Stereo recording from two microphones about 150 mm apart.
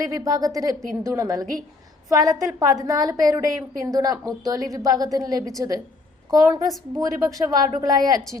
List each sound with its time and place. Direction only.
0.0 s a woman's voice: 25° right (ahead or behind)